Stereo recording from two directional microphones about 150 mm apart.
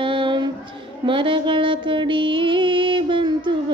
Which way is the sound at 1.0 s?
35° right (ahead or behind).